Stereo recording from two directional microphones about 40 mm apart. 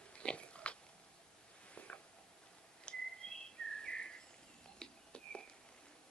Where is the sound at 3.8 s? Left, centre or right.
Left.